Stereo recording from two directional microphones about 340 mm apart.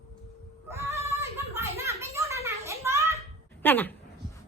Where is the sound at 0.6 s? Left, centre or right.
Centre.